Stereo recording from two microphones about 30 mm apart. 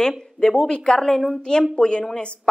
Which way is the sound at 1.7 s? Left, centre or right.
Left.